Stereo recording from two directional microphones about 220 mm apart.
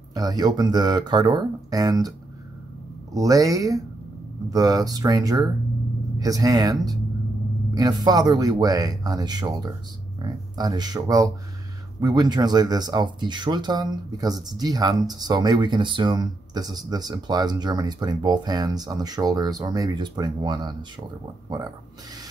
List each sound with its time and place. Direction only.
0.1 s speech: 15° right (ahead or behind)